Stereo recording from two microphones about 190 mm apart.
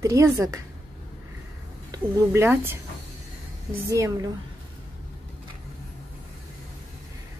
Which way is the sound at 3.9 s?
15° right (ahead or behind).